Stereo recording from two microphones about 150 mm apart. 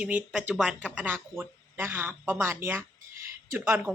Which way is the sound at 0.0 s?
10° right (ahead or behind).